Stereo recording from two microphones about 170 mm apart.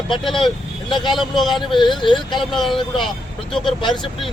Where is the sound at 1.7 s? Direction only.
25° left (ahead or behind).